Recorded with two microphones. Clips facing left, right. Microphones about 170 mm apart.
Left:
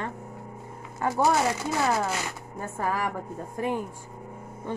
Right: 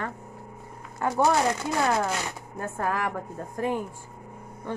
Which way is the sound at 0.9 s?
5° left (ahead or behind).